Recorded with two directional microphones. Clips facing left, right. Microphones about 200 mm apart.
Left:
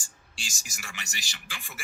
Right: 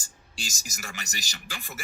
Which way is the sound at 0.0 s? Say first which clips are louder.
Right 5 dB; 40° right (ahead or behind).